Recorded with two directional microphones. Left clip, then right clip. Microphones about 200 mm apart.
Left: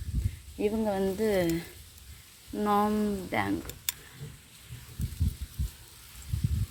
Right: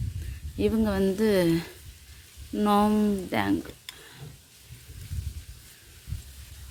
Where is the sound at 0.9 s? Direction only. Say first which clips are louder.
Right 3 dB; 35° right (ahead or behind).